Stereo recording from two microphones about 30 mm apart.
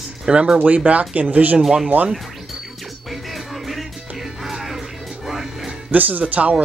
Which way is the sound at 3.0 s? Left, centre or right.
Centre.